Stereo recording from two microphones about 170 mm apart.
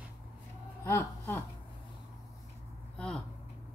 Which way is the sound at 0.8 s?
15° left (ahead or behind).